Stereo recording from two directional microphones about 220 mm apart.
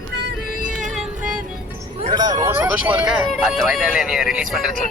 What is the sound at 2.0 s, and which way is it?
Vehicle, 20° right (ahead or behind).